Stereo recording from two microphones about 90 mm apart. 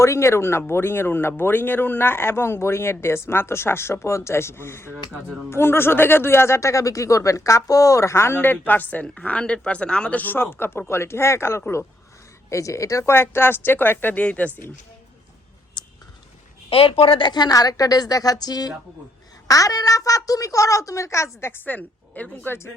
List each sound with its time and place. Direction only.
0.0 s a child's voice: 30° left (ahead or behind)
15.8 s a sound: 55° left (ahead or behind)
16.6 s a woman's voice: 90° left; by 21.2 s 35° left (ahead or behind)
21.4 s speech: 20° left (ahead or behind)